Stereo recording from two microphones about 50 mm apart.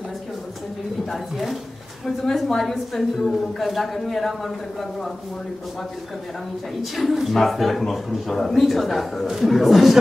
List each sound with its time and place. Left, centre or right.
1.1 s speech: centre
6.8 s speech: centre